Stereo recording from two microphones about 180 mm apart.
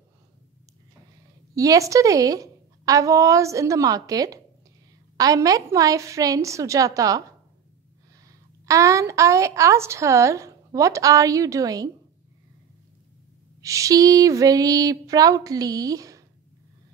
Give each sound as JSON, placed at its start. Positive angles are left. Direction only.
{"t": 1.5, "sound": "a woman's voice", "side_deg": -20}
{"t": 13.6, "sound": "a woman's voice", "side_deg": -15}